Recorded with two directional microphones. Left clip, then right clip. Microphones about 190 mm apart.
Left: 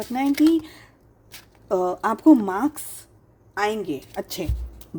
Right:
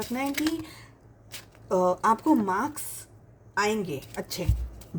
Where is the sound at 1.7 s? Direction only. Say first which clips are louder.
Even; 45° left (ahead or behind).